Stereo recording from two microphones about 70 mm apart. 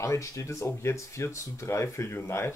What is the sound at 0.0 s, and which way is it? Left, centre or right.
Speech, left.